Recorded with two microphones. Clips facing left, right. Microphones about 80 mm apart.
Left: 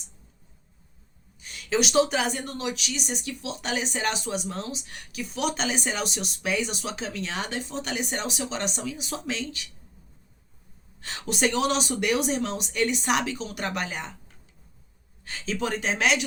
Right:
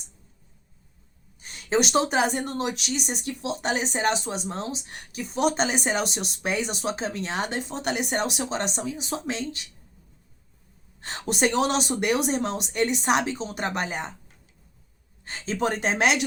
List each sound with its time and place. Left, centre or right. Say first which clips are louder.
1.4 s a woman's voice: right 2 dB; right
11.0 s speech: right 2 dB; right
15.2 s speech: right 3 dB; right